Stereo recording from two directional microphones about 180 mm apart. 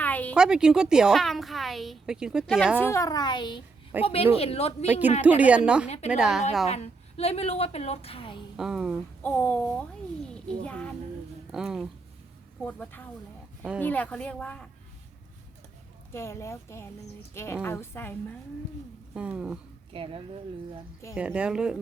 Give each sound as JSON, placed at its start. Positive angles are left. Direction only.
{"t": 0.0, "sound": "a sound", "side_deg": 10}
{"t": 0.3, "sound": "a woman's voice", "side_deg": -5}
{"t": 2.8, "sound": "a child's voice", "side_deg": 15}
{"t": 4.9, "sound": "a woman's voice", "side_deg": -10}
{"t": 6.7, "sound": "a woman's voice", "side_deg": 35}
{"t": 8.5, "sound": "a woman's voice", "side_deg": -5}
{"t": 9.2, "sound": "a woman's voice", "side_deg": 10}
{"t": 16.1, "sound": "a woman's voice", "side_deg": 15}
{"t": 19.1, "sound": "a woman's voice", "side_deg": -5}
{"t": 19.9, "sound": "speech", "side_deg": -30}
{"t": 21.2, "sound": "a woman's voice", "side_deg": -5}